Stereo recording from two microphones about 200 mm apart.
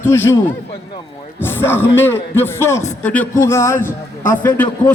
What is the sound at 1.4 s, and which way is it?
A man's voice, 10° left (ahead or behind).